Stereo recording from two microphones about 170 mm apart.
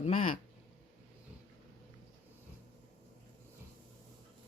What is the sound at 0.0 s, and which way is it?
Speech, 50° left (ahead or behind).